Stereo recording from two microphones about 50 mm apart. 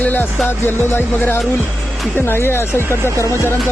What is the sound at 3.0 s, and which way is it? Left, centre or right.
Music, right.